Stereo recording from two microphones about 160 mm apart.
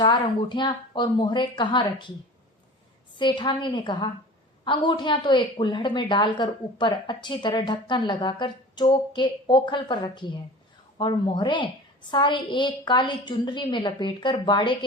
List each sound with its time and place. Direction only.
0.0 s a woman's voice: 30° left (ahead or behind)
3.2 s a woman's voice: 30° left (ahead or behind)